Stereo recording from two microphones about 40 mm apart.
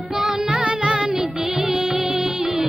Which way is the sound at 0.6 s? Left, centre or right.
Right.